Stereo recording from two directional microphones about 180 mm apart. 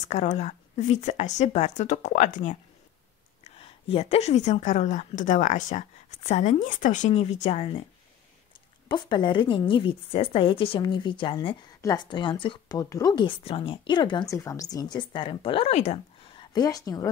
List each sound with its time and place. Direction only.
0.1 s a woman's voice: 40° left (ahead or behind)
3.5 s a woman's voice: 30° left (ahead or behind)
8.8 s speech: 25° left (ahead or behind)
16.5 s speech: 20° left (ahead or behind)